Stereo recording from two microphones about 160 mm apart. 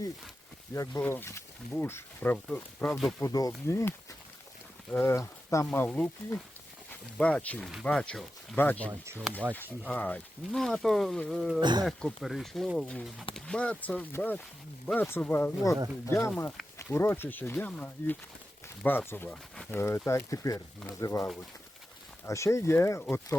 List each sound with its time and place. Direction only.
0.7 s speech: 15° left (ahead or behind)
3.2 s speech: 20° left (ahead or behind)
8.9 s speech: 15° right (ahead or behind)
9.6 s speech: 10° left (ahead or behind)
11.6 s speech: 25° right (ahead or behind)
11.9 s speech: centre (ahead or behind); by 21.2 s 20° left (ahead or behind)
22.3 s speech: 20° left (ahead or behind)